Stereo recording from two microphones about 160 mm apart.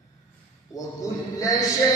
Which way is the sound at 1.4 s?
20° left (ahead or behind).